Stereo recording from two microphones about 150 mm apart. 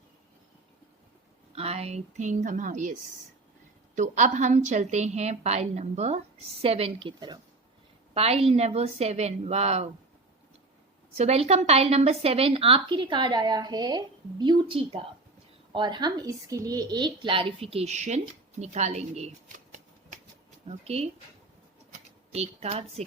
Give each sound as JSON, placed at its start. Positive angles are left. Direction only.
{"t": 1.5, "sound": "a woman's voice", "side_deg": -45}
{"t": 3.9, "sound": "a woman's voice", "side_deg": -55}
{"t": 8.1, "sound": "a woman's voice", "side_deg": -45}
{"t": 11.2, "sound": "a woman's voice", "side_deg": -45}
{"t": 20.7, "sound": "a woman's voice", "side_deg": -45}
{"t": 22.3, "sound": "a woman's voice", "side_deg": -45}